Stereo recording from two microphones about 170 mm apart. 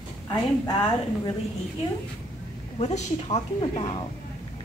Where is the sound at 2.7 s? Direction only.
40° left (ahead or behind).